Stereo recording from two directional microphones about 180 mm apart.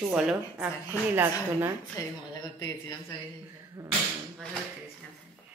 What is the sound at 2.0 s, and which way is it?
Speech, 20° left (ahead or behind).